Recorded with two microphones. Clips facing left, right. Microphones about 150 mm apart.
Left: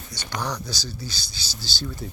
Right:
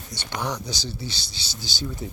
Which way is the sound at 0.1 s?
20° right (ahead or behind).